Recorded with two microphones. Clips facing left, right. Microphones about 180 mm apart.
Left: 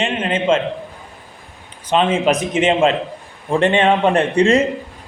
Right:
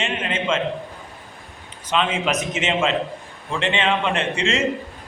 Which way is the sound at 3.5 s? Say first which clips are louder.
Left 8 dB; 45° left (ahead or behind).